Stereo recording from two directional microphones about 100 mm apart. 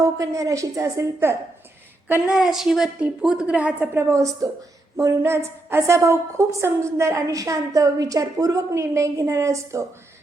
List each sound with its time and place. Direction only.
0.0 s a woman's voice: 35° right (ahead or behind)
2.2 s a woman's voice: 5° right (ahead or behind)
3.9 s a woman's voice: 30° right (ahead or behind)